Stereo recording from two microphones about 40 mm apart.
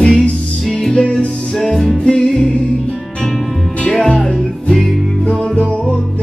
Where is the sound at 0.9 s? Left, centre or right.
Left.